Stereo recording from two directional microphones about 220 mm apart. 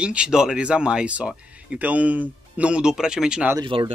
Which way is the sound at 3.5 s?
20° right (ahead or behind).